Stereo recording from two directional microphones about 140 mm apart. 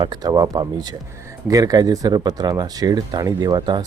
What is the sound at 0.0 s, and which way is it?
Speech, 25° right (ahead or behind).